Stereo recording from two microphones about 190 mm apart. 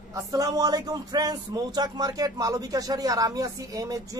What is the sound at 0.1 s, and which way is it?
Speech, 15° right (ahead or behind).